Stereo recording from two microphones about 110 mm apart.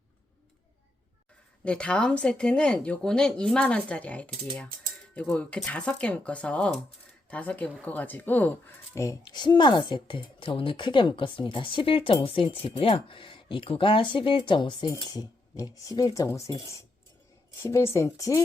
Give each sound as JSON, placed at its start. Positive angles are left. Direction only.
{"t": 1.6, "sound": "speech", "side_deg": 10}
{"t": 8.9, "sound": "a woman's voice", "side_deg": 30}
{"t": 9.3, "sound": "speech", "side_deg": 45}
{"t": 15.1, "sound": "a woman's voice", "side_deg": 35}
{"t": 17.6, "sound": "a woman's voice", "side_deg": 25}